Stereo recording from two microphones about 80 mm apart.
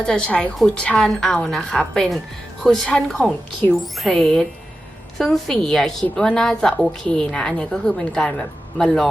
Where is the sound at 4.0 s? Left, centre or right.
Centre.